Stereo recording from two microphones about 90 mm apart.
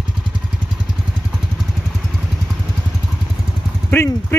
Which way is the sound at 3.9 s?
25° left (ahead or behind).